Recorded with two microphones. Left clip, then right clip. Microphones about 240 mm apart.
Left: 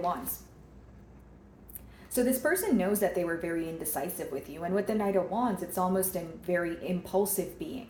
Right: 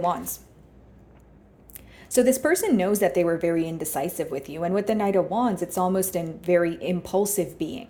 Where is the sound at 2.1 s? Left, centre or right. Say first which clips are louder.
Right 8 dB; right.